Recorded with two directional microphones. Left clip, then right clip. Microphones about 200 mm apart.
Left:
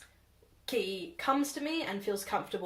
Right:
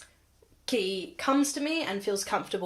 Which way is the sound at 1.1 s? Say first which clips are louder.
Right 3 dB; 40° right (ahead or behind).